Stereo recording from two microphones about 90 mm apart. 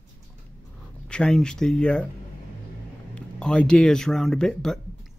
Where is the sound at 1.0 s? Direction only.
5° left (ahead or behind).